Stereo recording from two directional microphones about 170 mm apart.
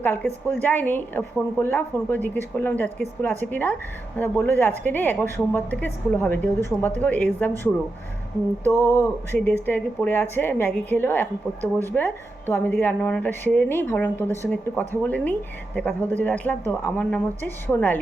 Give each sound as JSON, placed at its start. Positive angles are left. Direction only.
{"t": 0.0, "sound": "speech", "side_deg": 10}
{"t": 8.8, "sound": "speech", "side_deg": 20}
{"t": 11.6, "sound": "speech", "side_deg": -15}
{"t": 11.9, "sound": "a woman's voice", "side_deg": 10}